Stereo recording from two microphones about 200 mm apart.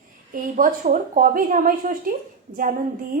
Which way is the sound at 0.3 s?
45° right (ahead or behind).